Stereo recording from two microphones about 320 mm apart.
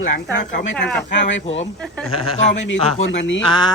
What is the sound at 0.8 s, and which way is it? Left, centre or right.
Speech, centre.